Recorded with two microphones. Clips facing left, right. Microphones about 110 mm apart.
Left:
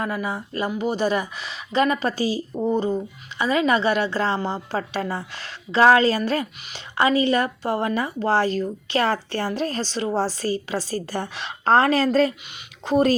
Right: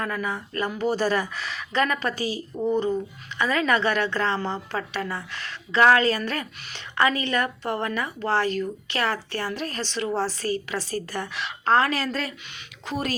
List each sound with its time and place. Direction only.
0.0 s speech: 20° left (ahead or behind)
4.4 s a woman's voice: 15° left (ahead or behind)
4.7 s a woman's voice: 35° left (ahead or behind)